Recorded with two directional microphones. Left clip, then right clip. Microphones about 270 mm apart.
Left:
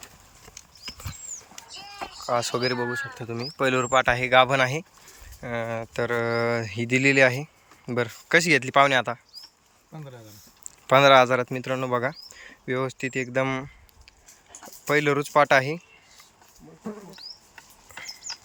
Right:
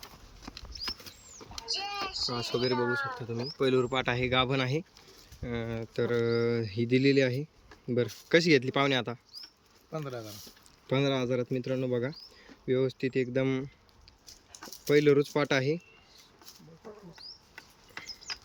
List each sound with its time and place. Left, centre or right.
1.6 s goat: right
2.4 s speech: centre
9.9 s speech: centre
10.8 s speech: centre
14.8 s speech: centre
17.9 s a sound: centre